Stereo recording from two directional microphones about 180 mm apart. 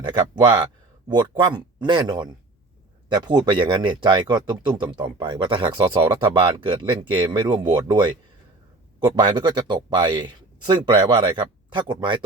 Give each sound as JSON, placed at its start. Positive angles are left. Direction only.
{"t": 0.0, "sound": "speech", "side_deg": -25}